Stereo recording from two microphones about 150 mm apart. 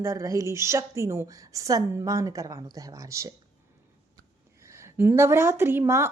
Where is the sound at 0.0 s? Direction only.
20° right (ahead or behind).